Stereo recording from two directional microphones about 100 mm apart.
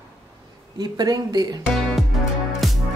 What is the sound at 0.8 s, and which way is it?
Speech, 45° right (ahead or behind).